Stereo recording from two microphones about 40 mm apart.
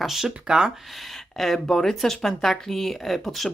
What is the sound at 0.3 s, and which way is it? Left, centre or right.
Speech, centre.